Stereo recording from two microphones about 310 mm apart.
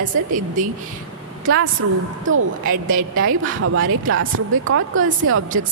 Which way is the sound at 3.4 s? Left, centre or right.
Right.